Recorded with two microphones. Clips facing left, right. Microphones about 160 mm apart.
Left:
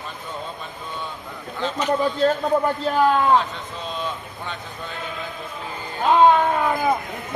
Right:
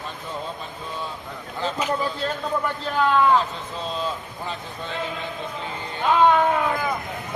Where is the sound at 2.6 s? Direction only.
35° left (ahead or behind).